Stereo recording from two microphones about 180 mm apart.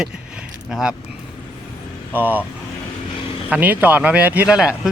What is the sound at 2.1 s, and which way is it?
Speech, 10° right (ahead or behind).